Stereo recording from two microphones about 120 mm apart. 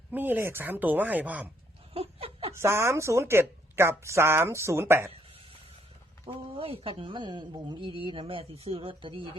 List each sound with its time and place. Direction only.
0.1 s speech: 15° right (ahead or behind)
1.9 s chuckle: 55° right (ahead or behind)
2.6 s speech: 20° right (ahead or behind)
6.2 s speech: 50° right (ahead or behind)